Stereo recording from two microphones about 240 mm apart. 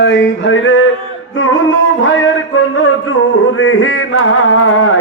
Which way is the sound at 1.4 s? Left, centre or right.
Left.